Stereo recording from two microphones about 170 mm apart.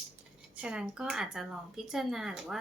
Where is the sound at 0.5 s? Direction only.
5° right (ahead or behind).